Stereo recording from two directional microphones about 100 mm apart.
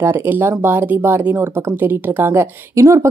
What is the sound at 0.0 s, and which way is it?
A woman's voice, 25° right (ahead or behind).